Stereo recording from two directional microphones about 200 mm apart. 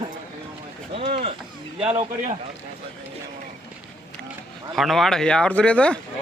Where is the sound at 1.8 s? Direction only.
30° right (ahead or behind).